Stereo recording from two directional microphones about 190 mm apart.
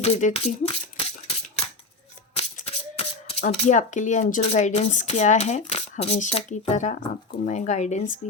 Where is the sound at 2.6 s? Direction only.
35° left (ahead or behind).